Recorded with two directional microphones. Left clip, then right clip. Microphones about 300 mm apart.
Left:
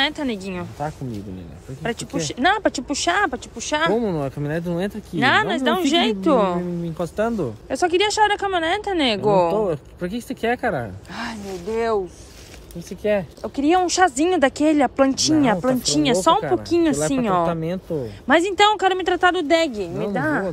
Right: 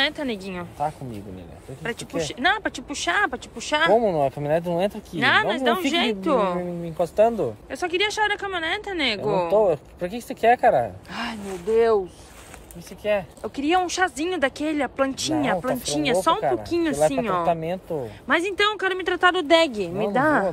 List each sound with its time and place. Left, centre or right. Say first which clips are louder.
0.0 s speech: left 2 dB; centre
1.8 s speech: left 2 dB; centre
13.0 s speech: left 2 dB; centre